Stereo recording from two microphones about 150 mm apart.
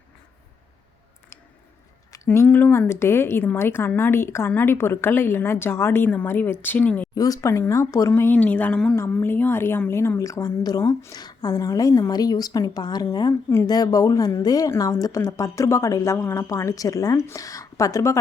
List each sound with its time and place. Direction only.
2.1 s a woman's voice: 15° left (ahead or behind)
7.2 s a woman's voice: 20° left (ahead or behind)